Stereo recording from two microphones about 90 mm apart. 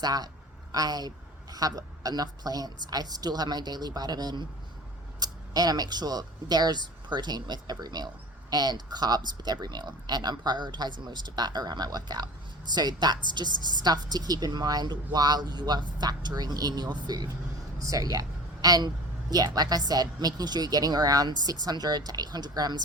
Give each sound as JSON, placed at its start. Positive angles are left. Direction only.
{"t": 0.0, "sound": "a woman's voice", "side_deg": -45}